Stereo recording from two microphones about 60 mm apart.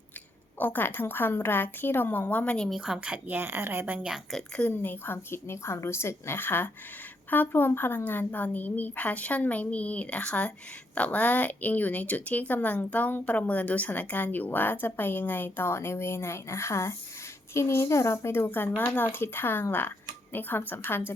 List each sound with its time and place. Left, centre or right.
0.6 s a woman's voice: left
2.8 s a woman's voice: centre
3.1 s speech: right
4.7 s a woman's voice: left